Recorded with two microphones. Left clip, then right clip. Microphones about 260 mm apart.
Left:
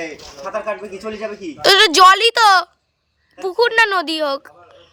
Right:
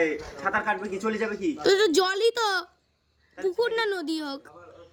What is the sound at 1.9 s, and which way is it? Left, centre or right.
A woman's voice, centre.